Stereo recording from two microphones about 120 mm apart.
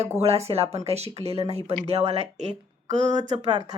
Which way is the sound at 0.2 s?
60° right (ahead or behind).